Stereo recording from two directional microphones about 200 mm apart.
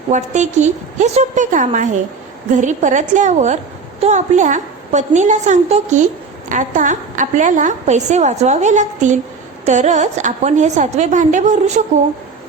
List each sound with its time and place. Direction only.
0.1 s a woman's voice: 35° right (ahead or behind)